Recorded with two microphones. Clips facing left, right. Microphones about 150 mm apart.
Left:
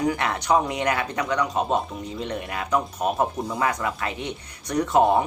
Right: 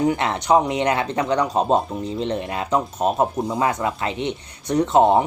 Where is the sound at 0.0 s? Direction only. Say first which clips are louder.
Right 4 dB; 25° right (ahead or behind).